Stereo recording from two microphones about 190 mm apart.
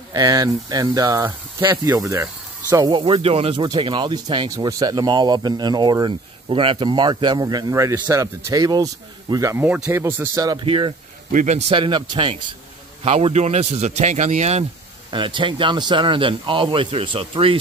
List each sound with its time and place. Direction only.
0.1 s speech: 20° right (ahead or behind)
11.3 s a man's voice: 40° right (ahead or behind)
11.7 s a man's voice: 25° right (ahead or behind)
15.0 s speech: 25° right (ahead or behind)